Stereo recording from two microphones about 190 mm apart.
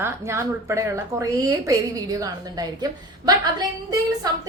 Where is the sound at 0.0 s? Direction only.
15° right (ahead or behind).